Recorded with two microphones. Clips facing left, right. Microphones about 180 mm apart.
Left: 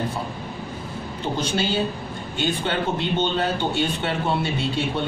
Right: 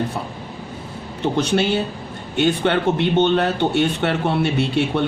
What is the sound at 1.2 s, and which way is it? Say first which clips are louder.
A man's voice: right 6 dB; 70° right (ahead or behind).